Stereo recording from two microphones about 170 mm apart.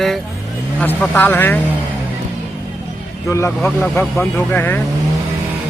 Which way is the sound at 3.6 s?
10° left (ahead or behind).